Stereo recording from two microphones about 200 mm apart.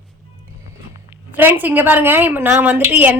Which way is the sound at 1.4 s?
10° right (ahead or behind).